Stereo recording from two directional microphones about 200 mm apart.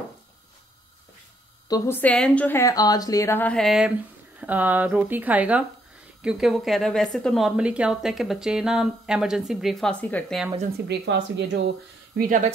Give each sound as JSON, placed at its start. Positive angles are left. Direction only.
{"t": 1.7, "sound": "a woman's voice", "side_deg": 10}
{"t": 10.9, "sound": "speech", "side_deg": -60}
{"t": 12.2, "sound": "speech", "side_deg": -40}